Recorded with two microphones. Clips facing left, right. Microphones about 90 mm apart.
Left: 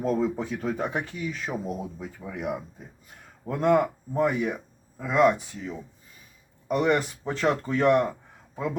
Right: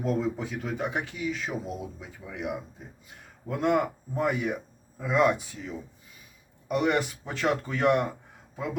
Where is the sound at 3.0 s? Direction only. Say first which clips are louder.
Left 4 dB; 40° left (ahead or behind).